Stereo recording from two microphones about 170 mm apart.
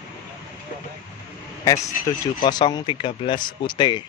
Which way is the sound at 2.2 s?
25° left (ahead or behind).